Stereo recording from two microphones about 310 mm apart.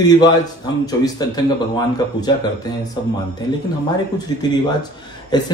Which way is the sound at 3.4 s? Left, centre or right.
Centre.